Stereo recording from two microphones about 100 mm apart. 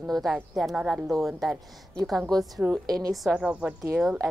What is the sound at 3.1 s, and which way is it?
Speech, 5° right (ahead or behind).